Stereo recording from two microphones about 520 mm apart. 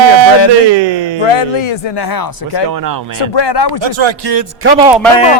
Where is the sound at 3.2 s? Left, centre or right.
Left.